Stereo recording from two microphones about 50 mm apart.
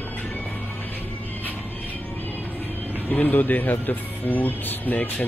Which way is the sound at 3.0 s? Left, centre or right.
Left.